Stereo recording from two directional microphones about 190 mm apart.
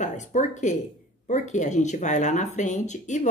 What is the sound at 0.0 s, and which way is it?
Speech, 40° left (ahead or behind).